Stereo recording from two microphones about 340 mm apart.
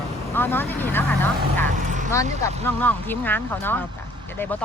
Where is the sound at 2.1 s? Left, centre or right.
Centre.